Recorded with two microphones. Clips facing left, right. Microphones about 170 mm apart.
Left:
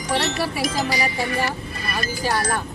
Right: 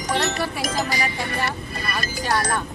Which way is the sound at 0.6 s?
45° right (ahead or behind).